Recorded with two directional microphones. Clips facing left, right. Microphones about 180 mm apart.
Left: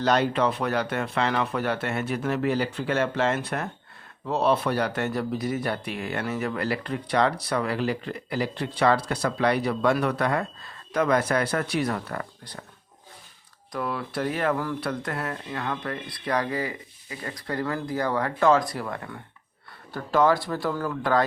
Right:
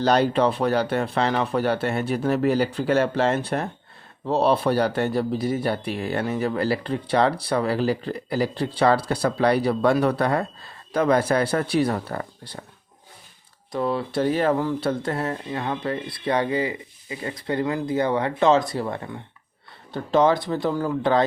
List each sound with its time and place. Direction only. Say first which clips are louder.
0.0 s speech: right 3 dB; 35° right (ahead or behind)
13.7 s speech: right 6 dB; 25° right (ahead or behind)